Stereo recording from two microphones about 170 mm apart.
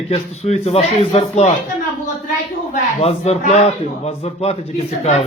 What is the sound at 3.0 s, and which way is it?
Speech, 40° left (ahead or behind).